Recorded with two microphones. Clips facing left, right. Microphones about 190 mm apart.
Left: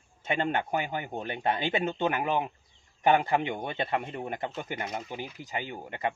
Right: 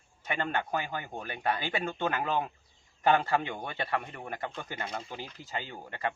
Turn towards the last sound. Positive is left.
turn(degrees=20)  # may be behind; listen again after turning